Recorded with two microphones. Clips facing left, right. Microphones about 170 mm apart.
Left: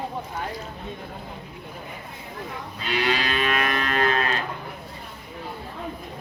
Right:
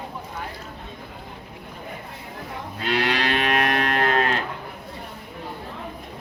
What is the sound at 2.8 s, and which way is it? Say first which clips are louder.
Moo: right 2 dB; 65° right (ahead or behind).